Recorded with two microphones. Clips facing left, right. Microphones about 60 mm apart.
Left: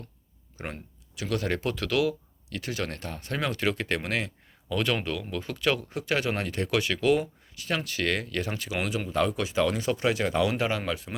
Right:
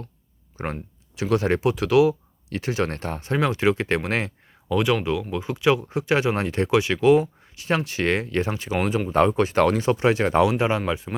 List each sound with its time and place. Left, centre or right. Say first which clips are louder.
0.5 s speech: right 7 dB; right
1.6 s speech: right 10 dB; centre
2.5 s speech: right 7 dB; right
3.2 s speech: right 7 dB; right
4.7 s speech: right 6 dB; centre; by 10.4 s right
10.4 s speech: right 6 dB; right